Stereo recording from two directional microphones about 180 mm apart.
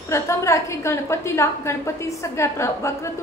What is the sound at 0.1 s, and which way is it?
A woman's voice, 15° left (ahead or behind).